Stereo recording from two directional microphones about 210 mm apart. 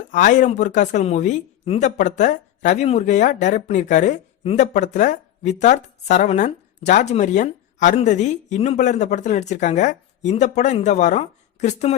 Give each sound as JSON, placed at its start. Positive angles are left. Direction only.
{"t": 0.1, "sound": "speech", "side_deg": 35}